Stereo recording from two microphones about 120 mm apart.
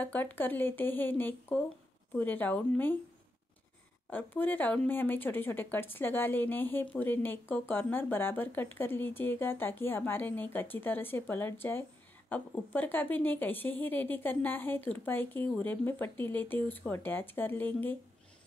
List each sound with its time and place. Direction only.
0.0 s speech: 15° left (ahead or behind)
4.1 s speech: 15° left (ahead or behind)